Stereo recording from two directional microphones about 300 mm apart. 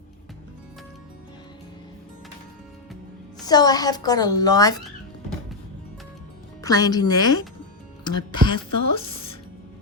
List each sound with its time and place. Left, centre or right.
3.4 s a woman's voice: centre
6.6 s a woman's voice: centre
8.7 s a woman's voice: left